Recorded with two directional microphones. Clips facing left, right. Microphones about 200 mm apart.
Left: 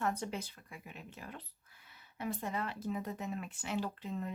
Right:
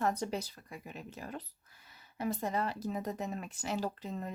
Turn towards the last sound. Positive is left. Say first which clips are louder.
# right 2 dB
turn(degrees=-40)  # may be behind; listen again after turning